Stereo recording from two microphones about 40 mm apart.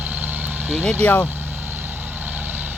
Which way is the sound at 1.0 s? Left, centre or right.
Left.